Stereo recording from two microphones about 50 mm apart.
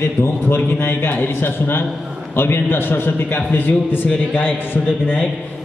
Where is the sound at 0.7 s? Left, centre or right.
Left.